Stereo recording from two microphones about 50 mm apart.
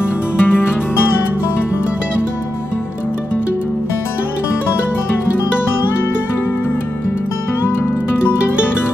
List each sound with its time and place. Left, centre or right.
0.0 s music: left